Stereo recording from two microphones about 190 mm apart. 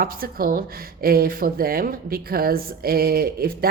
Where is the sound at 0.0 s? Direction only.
50° right (ahead or behind).